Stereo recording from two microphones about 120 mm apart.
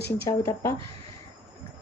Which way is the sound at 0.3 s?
25° left (ahead or behind).